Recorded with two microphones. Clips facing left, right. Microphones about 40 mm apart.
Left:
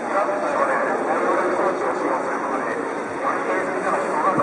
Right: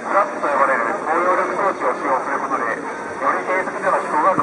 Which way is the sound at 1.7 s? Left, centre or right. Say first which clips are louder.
Right 2 dB; centre.